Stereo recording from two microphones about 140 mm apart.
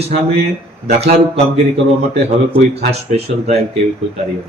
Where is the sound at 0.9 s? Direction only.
50° right (ahead or behind).